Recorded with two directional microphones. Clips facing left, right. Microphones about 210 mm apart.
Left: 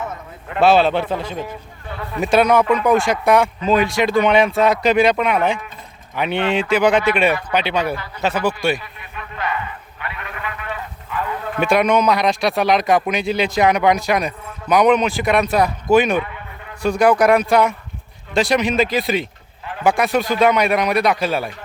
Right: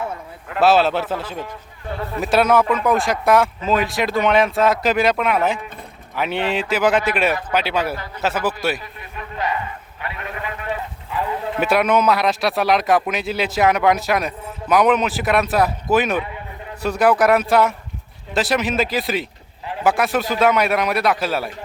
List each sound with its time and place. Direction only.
0.4 s speech: centre (ahead or behind)
9.0 s a sound: 35° right (ahead or behind)
10.0 s sheep: 35° right (ahead or behind)
11.6 s speech: 5° right (ahead or behind)